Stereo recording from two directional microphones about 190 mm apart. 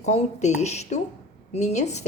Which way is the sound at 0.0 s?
35° left (ahead or behind).